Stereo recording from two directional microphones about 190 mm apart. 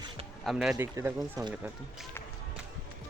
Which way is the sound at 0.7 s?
15° right (ahead or behind).